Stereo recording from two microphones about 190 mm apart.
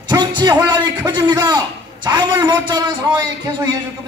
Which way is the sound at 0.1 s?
20° right (ahead or behind).